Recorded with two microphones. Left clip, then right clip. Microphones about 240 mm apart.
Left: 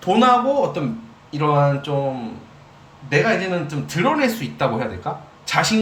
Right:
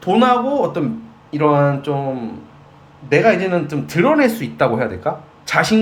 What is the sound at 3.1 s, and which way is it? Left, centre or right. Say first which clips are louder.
Speech: right 5 dB; centre.